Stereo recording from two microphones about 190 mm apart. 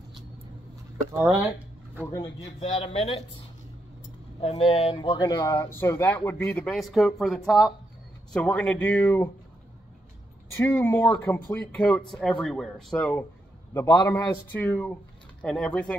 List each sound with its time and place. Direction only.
2.1 s speech: 20° left (ahead or behind)
2.6 s speech: 30° left (ahead or behind)
4.4 s speech: 30° left (ahead or behind); by 9.3 s 10° left (ahead or behind)
10.5 s speech: 15° left (ahead or behind)